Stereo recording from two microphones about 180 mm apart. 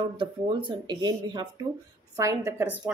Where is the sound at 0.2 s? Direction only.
25° right (ahead or behind).